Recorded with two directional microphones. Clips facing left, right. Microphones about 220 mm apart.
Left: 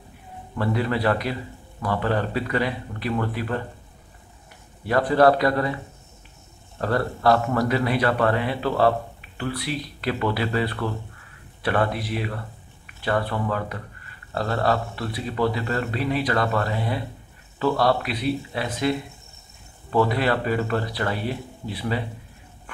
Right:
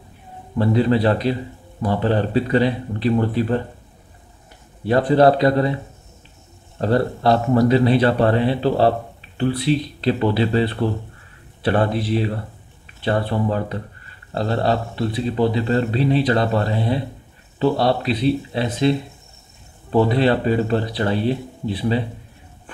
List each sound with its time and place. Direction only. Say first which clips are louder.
0.6 s a man's voice: right 7 dB; 25° right (ahead or behind)
4.8 s a man's voice: right 3 dB; 25° right (ahead or behind)
6.8 s a man's voice: right 5 dB; 25° right (ahead or behind)